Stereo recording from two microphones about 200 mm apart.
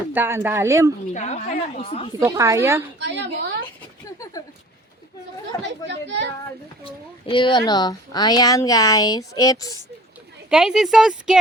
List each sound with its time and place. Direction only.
0.1 s speech: 10° right (ahead or behind)
1.1 s a woman's voice: 35° left (ahead or behind)
2.1 s speech: 15° right (ahead or behind)
3.0 s a child's voice: 60° right (ahead or behind)
5.6 s a child's voice: 60° right (ahead or behind)
6.8 s a woman's voice: 25° left (ahead or behind)
10.5 s speech: 5° right (ahead or behind)